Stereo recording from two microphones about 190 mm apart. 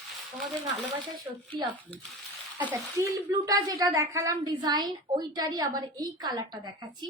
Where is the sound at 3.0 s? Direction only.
15° right (ahead or behind).